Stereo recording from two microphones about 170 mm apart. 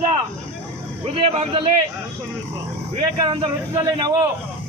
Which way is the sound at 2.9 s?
30° right (ahead or behind).